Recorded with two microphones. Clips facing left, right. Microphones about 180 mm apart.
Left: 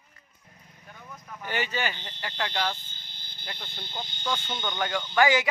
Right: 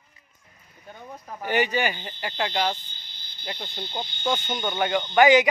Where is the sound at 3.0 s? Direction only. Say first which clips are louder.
Left 1 dB; 50° left (ahead or behind).